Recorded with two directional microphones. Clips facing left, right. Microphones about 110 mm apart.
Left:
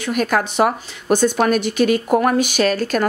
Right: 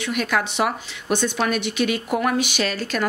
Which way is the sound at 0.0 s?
45° left (ahead or behind).